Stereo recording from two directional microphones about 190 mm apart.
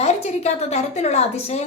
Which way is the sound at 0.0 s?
35° left (ahead or behind).